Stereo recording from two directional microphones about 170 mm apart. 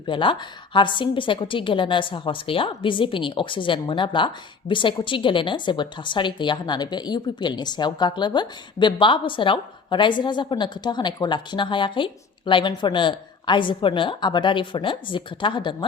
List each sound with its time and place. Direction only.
0.0 s a woman's voice: 30° left (ahead or behind)